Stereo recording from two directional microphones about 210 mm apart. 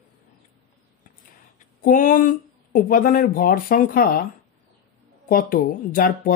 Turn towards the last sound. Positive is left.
turn(degrees=40)  # may be behind; listen again after turning